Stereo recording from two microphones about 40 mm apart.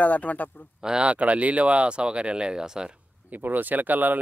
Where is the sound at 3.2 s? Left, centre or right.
Right.